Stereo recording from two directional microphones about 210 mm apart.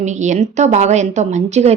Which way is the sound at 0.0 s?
35° right (ahead or behind).